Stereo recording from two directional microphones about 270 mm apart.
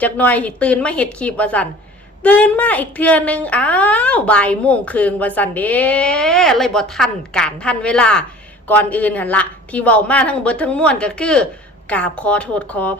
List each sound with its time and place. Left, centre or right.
0.0 s speech: centre